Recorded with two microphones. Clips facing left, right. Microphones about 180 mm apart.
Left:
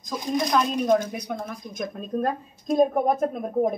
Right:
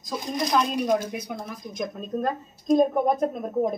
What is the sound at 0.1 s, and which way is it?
A woman's voice, centre (ahead or behind).